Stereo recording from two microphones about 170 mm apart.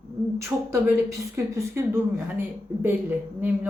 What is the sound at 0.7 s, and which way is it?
A woman's voice, 15° right (ahead or behind).